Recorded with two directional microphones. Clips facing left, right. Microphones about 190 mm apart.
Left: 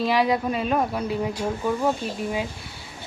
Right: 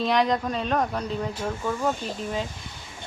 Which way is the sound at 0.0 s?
5° left (ahead or behind).